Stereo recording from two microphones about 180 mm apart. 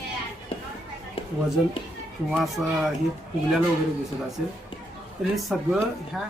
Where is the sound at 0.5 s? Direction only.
30° left (ahead or behind).